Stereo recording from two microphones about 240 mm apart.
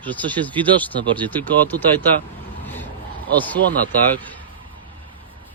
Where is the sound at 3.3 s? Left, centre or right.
Centre.